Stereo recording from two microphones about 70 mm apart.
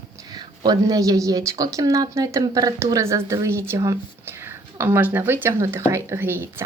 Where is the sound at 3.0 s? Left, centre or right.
Right.